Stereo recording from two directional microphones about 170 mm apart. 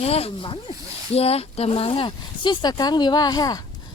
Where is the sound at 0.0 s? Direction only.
35° left (ahead or behind).